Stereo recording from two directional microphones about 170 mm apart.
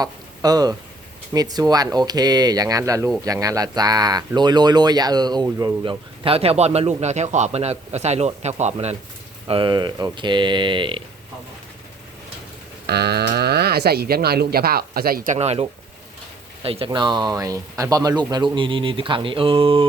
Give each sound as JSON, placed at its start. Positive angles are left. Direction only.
{"t": 0.0, "sound": "speech", "side_deg": -20}
{"t": 9.5, "sound": "speech", "side_deg": -30}
{"t": 12.9, "sound": "speech", "side_deg": -70}
{"t": 16.6, "sound": "speech", "side_deg": -35}